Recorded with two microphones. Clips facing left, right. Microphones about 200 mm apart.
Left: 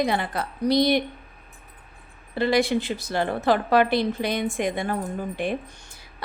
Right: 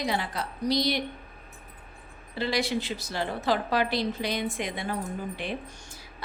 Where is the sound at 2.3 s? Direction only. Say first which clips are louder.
Left 7 dB; 55° left (ahead or behind).